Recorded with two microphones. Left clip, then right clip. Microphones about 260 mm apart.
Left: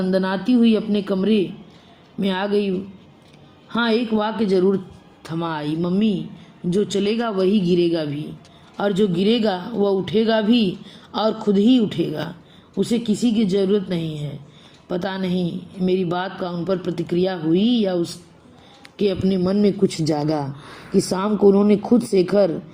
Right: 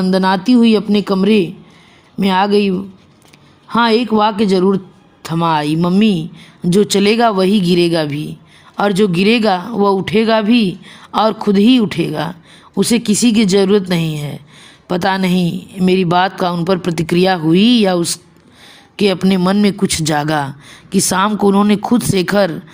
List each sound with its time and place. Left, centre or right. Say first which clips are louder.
0.0 s a woman's voice: right 7 dB; right